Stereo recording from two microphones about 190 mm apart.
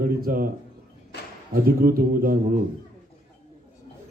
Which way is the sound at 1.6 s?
50° right (ahead or behind).